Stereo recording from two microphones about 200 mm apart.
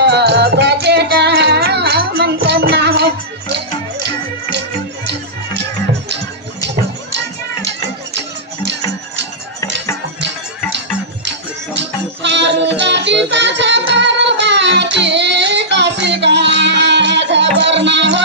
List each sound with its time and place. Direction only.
0.0 s music: 55° right (ahead or behind)
11.2 s music: 60° right (ahead or behind)